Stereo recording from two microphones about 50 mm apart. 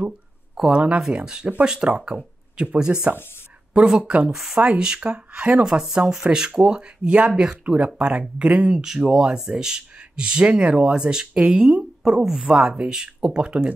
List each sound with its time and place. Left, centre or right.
0.7 s speech: right
4.3 s speech: centre
4.6 s speech: centre
5.7 s speech: centre
8.7 s speech: centre
12.0 s speech: centre
12.4 s speech: centre